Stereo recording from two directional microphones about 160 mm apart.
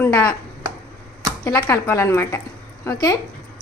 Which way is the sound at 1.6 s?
15° left (ahead or behind).